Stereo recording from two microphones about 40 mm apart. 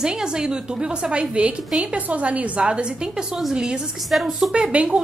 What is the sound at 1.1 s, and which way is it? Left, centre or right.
A woman's voice, right.